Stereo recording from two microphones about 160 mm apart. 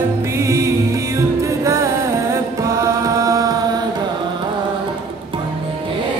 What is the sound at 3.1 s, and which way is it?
Music, 20° right (ahead or behind).